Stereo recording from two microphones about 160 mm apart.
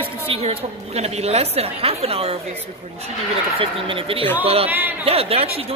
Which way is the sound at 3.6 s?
35° right (ahead or behind).